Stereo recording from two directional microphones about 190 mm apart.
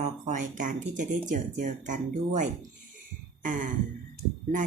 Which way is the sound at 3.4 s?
45° right (ahead or behind).